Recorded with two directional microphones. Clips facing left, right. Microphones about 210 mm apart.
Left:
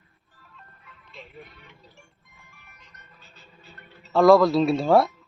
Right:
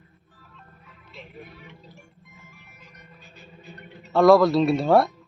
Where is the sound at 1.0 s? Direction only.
Centre (ahead or behind).